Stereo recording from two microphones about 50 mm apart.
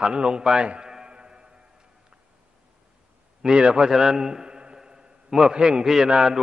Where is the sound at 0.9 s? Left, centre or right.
Centre.